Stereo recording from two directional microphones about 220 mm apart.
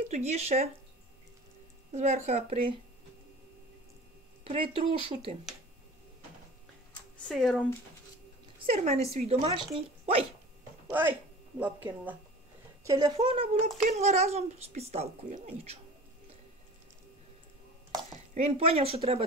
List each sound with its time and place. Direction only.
0.1 s speech: 30° right (ahead or behind)
1.9 s speech: 30° right (ahead or behind)
4.5 s speech: 25° right (ahead or behind)
7.2 s speech: 5° left (ahead or behind)
8.5 s speech: 30° right (ahead or behind)
10.9 s a woman's voice: 10° right (ahead or behind); by 15.8 s 30° right (ahead or behind)
18.3 s speech: 25° right (ahead or behind)